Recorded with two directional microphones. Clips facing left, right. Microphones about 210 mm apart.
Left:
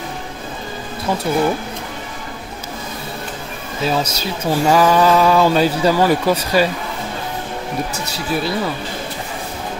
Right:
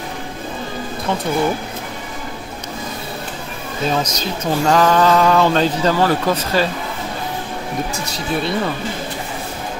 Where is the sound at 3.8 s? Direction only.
10° left (ahead or behind).